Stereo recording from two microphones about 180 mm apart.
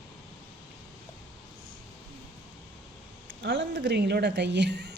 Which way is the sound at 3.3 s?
90° right.